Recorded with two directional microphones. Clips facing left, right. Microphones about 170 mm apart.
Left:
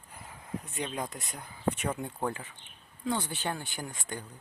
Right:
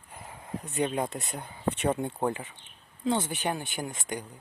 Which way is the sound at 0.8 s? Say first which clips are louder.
Right 8 dB; 30° right (ahead or behind).